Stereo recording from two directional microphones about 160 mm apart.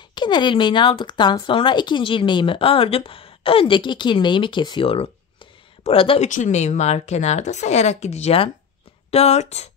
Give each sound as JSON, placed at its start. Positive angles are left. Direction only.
{"t": 0.1, "sound": "speech", "side_deg": 25}
{"t": 6.2, "sound": "speech", "side_deg": 50}